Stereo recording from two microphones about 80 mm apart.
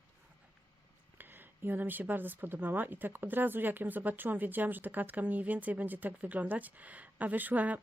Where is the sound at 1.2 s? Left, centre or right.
Right.